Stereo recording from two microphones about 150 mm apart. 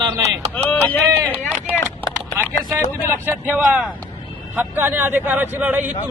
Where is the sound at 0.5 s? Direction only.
10° left (ahead or behind).